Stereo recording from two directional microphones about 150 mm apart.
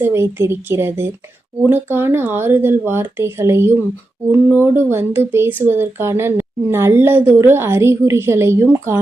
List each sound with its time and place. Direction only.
0.0 s speech: 15° right (ahead or behind)